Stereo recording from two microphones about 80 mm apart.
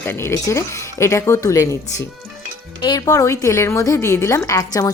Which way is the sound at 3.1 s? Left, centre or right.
Left.